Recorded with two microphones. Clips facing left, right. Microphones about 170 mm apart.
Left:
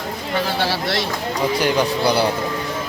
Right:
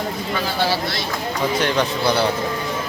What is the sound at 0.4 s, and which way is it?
Speech, 70° left (ahead or behind).